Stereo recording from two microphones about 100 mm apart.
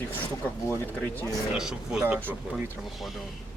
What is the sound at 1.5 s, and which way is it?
Speech, 5° right (ahead or behind).